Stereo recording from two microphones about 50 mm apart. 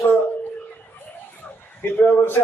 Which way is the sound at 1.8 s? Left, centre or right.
Left.